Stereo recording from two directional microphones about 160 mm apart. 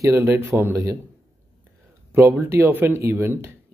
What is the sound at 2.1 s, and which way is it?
Speech, 15° right (ahead or behind).